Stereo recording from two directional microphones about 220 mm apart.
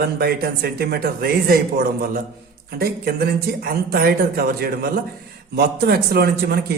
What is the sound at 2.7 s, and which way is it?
A woman's voice, 45° right (ahead or behind).